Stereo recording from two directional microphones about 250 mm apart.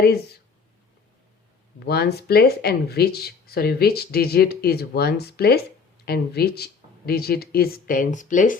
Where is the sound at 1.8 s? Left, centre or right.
Left.